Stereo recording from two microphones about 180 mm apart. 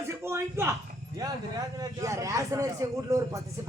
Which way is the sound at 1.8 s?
20° right (ahead or behind).